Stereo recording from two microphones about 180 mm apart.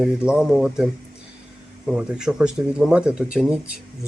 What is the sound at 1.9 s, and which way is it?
Speech, 5° right (ahead or behind).